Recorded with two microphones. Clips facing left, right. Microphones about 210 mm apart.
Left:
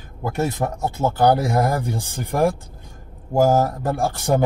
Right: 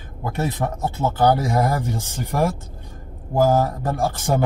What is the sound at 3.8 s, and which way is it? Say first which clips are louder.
Speech: left 1 dB; 15° left (ahead or behind).